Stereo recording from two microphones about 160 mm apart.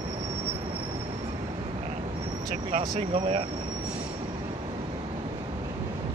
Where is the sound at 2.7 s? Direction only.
45° right (ahead or behind).